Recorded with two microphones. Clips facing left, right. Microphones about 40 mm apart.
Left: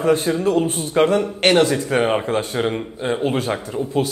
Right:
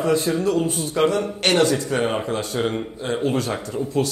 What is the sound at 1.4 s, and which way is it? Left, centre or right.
A man's voice, left.